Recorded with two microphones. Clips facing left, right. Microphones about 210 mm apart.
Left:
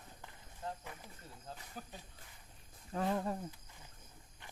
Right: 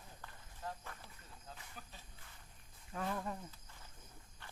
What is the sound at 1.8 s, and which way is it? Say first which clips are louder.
Cricket: left 7 dB; 40° left (ahead or behind).